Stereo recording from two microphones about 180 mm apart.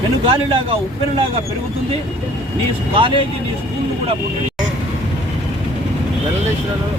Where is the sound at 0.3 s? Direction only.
30° right (ahead or behind).